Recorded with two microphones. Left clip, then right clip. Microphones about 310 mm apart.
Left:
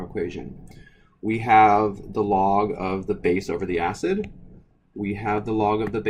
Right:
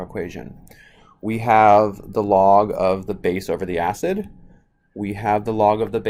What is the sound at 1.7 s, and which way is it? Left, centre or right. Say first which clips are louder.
Speech: right 6 dB; right.